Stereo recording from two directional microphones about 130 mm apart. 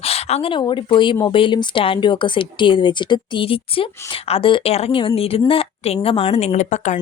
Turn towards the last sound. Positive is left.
turn(degrees=65)  # may be behind; listen again after turning